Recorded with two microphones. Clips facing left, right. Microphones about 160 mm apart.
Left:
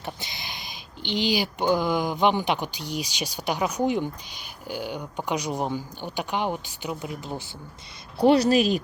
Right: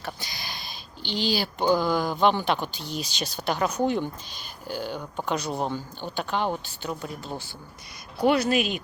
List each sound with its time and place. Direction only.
0.0 s speech: 20° left (ahead or behind)
8.2 s speech: 35° left (ahead or behind)